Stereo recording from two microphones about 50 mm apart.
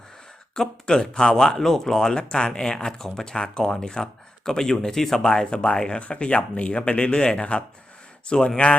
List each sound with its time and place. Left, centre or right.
0.5 s speech: centre